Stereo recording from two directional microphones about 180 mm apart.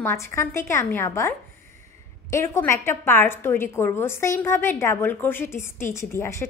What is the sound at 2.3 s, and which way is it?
A woman's voice, 15° left (ahead or behind).